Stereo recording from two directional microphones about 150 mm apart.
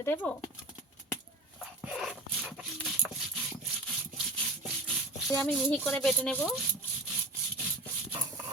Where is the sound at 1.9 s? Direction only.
5° right (ahead or behind).